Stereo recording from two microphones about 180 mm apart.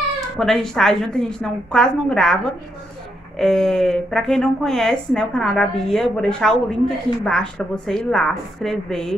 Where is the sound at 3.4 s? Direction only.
Centre (ahead or behind).